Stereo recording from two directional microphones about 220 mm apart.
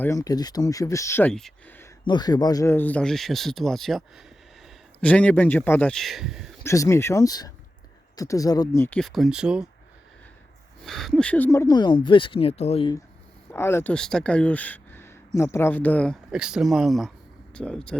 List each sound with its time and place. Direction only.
0.0 s speech: 15° left (ahead or behind)
2.0 s speech: 20° left (ahead or behind); by 6.5 s centre (ahead or behind)
6.7 s speech: 15° left (ahead or behind); by 9.6 s 5° right (ahead or behind)
10.8 s speech: centre (ahead or behind); by 13.0 s 25° left (ahead or behind)
13.5 s speech: 10° left (ahead or behind)